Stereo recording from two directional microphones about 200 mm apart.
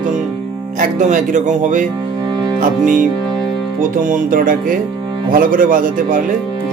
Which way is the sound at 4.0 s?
40° right (ahead or behind).